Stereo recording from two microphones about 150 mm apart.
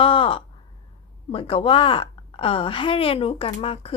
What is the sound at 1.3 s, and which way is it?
A woman's voice, 40° left (ahead or behind).